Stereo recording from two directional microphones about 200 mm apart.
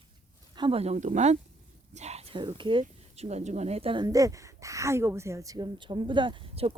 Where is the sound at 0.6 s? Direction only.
30° right (ahead or behind).